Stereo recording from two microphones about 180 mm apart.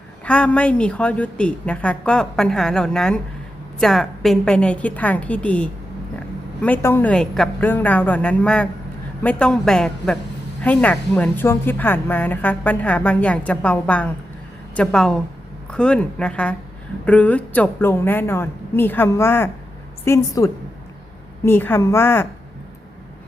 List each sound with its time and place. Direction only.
0.3 s a woman's voice: 5° left (ahead or behind)